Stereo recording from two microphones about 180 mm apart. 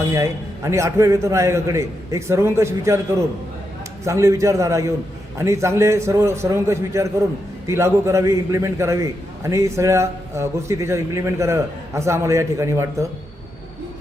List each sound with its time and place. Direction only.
0.0 s a man's voice: 15° right (ahead or behind)